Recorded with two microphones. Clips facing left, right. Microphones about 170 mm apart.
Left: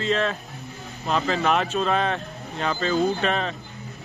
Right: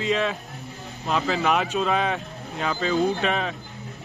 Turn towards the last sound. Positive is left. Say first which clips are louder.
# even
turn(degrees=-5)  # may be behind; listen again after turning